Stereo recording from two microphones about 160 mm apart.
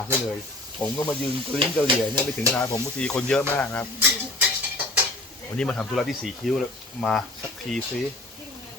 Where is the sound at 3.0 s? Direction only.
5° left (ahead or behind).